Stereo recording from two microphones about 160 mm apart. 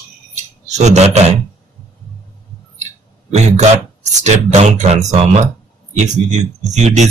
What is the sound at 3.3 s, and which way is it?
Speech, 45° right (ahead or behind).